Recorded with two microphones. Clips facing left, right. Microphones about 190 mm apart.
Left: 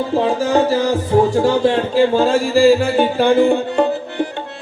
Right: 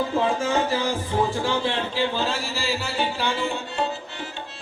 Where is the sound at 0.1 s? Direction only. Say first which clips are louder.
Left 7 dB; 35° left (ahead or behind).